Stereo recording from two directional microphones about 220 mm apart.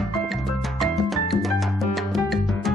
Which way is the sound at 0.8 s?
Centre (ahead or behind).